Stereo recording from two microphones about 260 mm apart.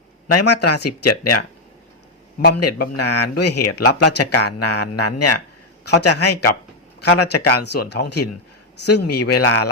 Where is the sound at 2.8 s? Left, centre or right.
Left.